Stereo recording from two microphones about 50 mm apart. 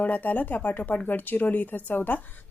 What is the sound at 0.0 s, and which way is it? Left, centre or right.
A woman's voice, left.